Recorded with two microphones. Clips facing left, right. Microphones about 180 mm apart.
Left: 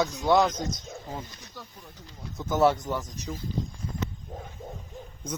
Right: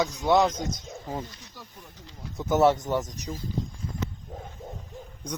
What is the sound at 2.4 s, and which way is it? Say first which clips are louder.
Speech: right 2 dB; 20° right (ahead or behind).